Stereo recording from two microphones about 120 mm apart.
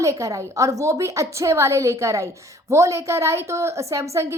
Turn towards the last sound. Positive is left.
turn(degrees=-25)  # may be behind; listen again after turning